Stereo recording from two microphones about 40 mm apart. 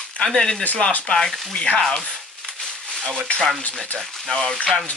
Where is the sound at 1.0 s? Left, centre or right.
Centre.